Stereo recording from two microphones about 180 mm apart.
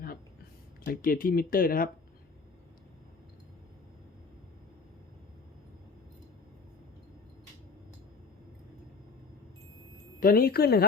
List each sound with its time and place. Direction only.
0.9 s speech: 50° left (ahead or behind)
10.2 s speech: 55° left (ahead or behind)